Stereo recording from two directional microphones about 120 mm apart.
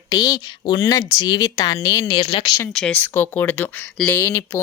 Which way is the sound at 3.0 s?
20° left (ahead or behind).